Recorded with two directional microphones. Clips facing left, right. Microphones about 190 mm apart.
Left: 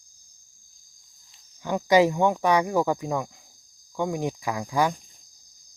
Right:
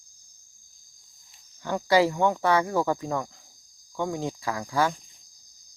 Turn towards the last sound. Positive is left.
turn(degrees=15)  # may be behind; listen again after turning